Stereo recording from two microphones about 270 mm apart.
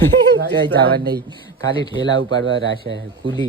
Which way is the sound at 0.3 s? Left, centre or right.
Right.